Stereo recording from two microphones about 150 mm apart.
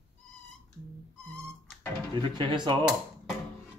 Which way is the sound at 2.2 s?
30° right (ahead or behind).